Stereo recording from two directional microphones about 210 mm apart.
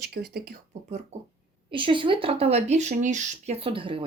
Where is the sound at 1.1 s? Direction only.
30° right (ahead or behind).